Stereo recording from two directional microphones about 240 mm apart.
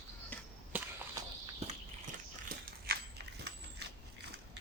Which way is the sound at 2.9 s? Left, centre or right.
Right.